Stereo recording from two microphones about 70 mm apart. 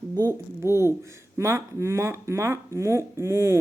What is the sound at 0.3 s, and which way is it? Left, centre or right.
Speech, right.